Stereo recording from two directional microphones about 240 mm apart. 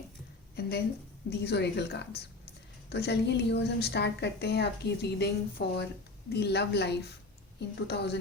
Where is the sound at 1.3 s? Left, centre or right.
Left.